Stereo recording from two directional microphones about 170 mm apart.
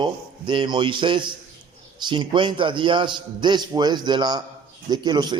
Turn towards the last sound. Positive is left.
turn(degrees=-25)  # may be behind; listen again after turning